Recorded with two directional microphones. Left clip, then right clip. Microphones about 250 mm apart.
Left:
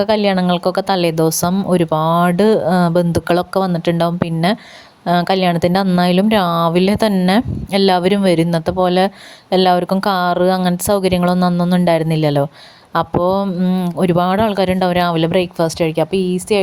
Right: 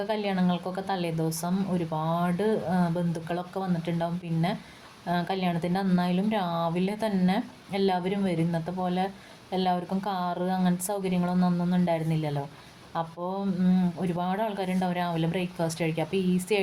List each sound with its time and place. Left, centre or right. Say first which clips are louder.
0.0 s a woman's voice: left 14 dB; left